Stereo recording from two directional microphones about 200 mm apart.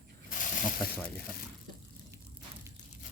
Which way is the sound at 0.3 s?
40° left (ahead or behind).